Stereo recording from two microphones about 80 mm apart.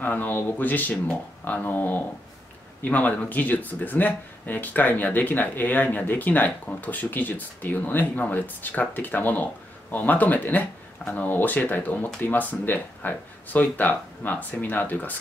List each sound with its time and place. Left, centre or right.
0.0 s speech: left